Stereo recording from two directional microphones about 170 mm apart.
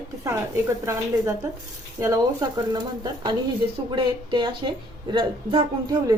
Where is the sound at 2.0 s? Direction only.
20° right (ahead or behind).